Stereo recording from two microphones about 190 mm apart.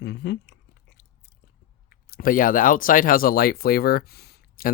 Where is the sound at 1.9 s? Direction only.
50° left (ahead or behind).